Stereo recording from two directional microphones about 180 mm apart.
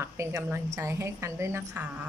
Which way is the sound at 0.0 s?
15° right (ahead or behind).